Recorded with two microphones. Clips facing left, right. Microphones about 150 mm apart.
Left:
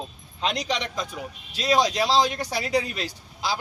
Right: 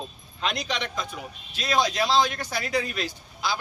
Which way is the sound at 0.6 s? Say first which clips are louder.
Left 2 dB; 35° left (ahead or behind).